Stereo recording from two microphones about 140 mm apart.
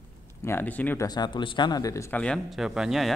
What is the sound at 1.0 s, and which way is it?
A man's voice, 30° left (ahead or behind).